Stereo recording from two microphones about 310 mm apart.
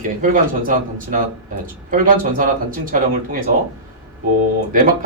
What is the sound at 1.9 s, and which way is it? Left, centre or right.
Speech, right.